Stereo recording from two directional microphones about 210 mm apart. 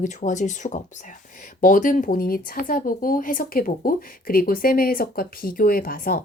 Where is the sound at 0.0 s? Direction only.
35° left (ahead or behind).